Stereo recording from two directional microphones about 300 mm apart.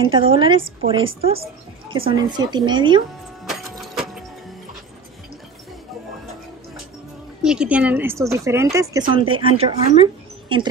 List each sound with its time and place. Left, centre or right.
0.0 s a woman's voice: centre
3.4 s vehicle: centre
7.4 s a woman's voice: centre